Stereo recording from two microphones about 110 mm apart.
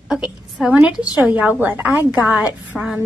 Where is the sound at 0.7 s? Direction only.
10° right (ahead or behind).